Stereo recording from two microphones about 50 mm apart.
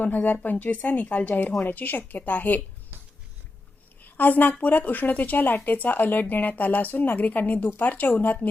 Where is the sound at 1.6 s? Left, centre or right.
Left.